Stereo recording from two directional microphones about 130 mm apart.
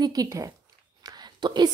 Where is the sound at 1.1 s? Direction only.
35° right (ahead or behind).